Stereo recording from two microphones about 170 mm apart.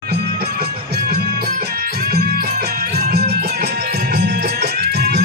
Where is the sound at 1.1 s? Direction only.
65° right (ahead or behind).